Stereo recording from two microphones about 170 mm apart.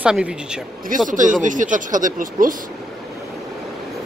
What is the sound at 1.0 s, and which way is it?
Speech, 50° right (ahead or behind).